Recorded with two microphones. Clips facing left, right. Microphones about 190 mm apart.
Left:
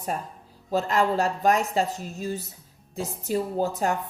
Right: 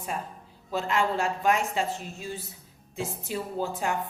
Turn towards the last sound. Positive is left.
turn(degrees=40)  # may be behind; listen again after turning